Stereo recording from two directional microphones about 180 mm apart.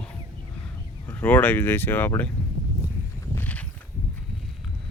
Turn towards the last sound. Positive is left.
turn(degrees=10)  # may be behind; listen again after turning